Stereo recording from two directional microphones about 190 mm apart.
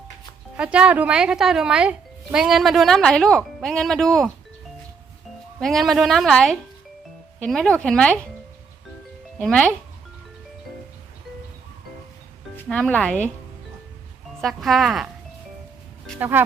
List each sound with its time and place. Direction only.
0.5 s speech: 5° right (ahead or behind)
5.5 s speech: centre (ahead or behind)
9.4 s speech: 5° left (ahead or behind)
12.5 s speech: 5° left (ahead or behind)
14.4 s speech: centre (ahead or behind)